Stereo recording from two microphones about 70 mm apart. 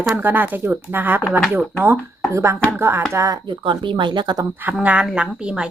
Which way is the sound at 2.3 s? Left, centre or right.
Right.